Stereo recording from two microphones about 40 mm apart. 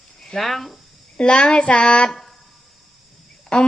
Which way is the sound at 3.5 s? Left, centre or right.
Left.